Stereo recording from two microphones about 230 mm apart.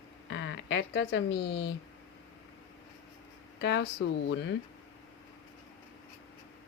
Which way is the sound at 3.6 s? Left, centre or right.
Left.